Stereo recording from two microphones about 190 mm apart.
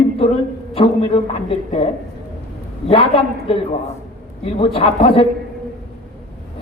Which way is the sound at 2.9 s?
30° left (ahead or behind).